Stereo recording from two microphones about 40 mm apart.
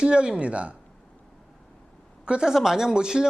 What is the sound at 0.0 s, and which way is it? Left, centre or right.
Speech, right.